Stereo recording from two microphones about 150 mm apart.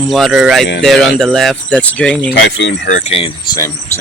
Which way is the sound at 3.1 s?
40° left (ahead or behind).